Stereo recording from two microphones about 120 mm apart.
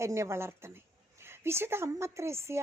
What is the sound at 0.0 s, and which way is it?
A woman's voice, 25° right (ahead or behind).